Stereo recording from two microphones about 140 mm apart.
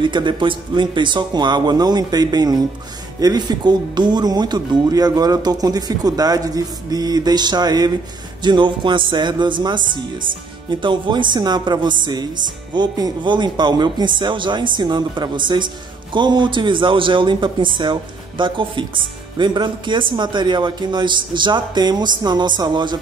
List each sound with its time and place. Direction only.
0.0 s speech: 35° right (ahead or behind)